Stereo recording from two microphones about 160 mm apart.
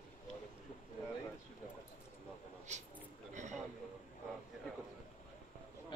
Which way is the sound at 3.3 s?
50° right (ahead or behind).